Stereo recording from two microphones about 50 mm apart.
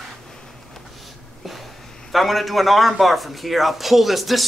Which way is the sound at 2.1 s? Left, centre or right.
Centre.